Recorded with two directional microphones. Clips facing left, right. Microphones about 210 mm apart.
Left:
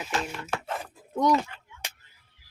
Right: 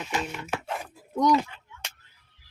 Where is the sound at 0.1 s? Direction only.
15° right (ahead or behind).